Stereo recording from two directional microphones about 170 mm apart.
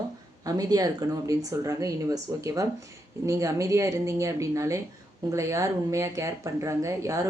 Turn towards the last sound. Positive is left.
turn(degrees=-20)  # may be behind; listen again after turning